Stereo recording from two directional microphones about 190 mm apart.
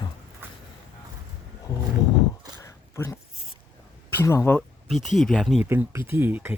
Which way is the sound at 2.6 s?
15° left (ahead or behind).